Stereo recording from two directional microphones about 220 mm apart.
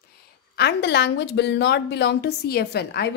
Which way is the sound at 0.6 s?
50° left (ahead or behind).